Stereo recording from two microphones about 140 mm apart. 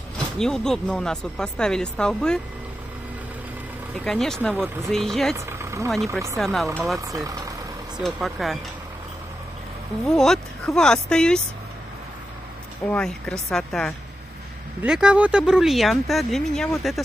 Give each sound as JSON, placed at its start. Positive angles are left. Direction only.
{"t": 0.4, "sound": "speech", "side_deg": 5}
{"t": 4.0, "sound": "speech", "side_deg": 5}
{"t": 5.3, "sound": "speech", "side_deg": -20}
{"t": 6.3, "sound": "speech", "side_deg": 0}
{"t": 7.0, "sound": "speech", "side_deg": -25}
{"t": 8.0, "sound": "speech", "side_deg": 0}
{"t": 10.0, "sound": "speech", "side_deg": 5}
{"t": 12.8, "sound": "speech", "side_deg": 10}